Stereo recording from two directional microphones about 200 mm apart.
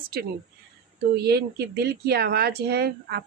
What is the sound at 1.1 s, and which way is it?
Speech, 55° right (ahead or behind).